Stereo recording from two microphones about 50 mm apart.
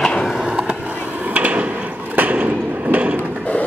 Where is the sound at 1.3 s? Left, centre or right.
Right.